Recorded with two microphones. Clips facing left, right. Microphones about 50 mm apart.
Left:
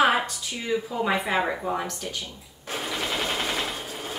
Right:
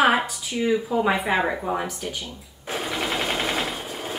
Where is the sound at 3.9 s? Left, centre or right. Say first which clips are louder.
Right 3 dB; right.